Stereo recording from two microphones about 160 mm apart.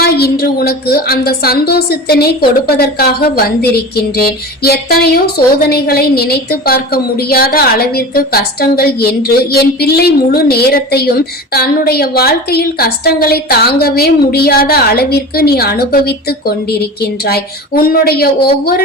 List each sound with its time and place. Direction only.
0.0 s speech: 80° left